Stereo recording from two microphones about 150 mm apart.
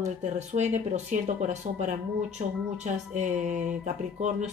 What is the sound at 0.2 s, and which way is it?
Speech, 50° right (ahead or behind).